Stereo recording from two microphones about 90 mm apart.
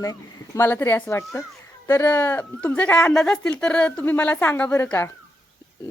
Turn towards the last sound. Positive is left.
turn(degrees=25)  # may be behind; listen again after turning